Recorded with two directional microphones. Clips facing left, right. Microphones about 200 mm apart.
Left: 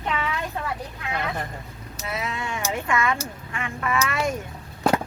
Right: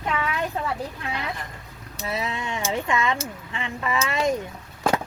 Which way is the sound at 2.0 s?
30° right (ahead or behind).